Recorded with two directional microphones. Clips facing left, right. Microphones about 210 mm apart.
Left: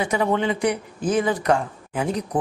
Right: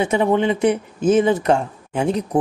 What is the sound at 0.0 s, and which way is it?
Speech, 25° right (ahead or behind).